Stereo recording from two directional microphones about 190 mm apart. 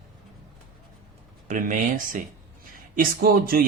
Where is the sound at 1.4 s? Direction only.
45° right (ahead or behind).